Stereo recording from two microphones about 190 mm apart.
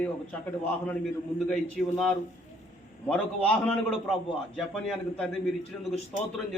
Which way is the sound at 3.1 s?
5° left (ahead or behind).